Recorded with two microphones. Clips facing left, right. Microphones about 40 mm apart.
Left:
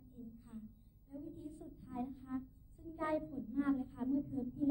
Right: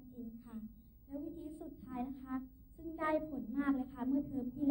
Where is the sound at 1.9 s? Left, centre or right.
Right.